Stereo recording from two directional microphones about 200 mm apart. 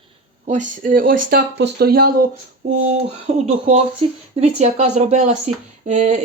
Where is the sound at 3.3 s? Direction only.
35° right (ahead or behind).